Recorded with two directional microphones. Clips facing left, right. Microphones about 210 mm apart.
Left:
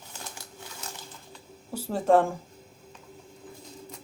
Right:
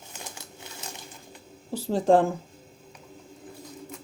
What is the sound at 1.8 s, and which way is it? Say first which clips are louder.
Speech: right 2 dB; 30° right (ahead or behind).